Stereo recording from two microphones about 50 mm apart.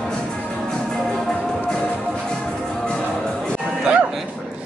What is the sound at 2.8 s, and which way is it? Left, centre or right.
Music, centre.